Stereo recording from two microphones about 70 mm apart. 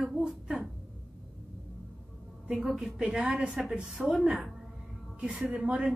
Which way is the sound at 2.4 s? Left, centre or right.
Centre.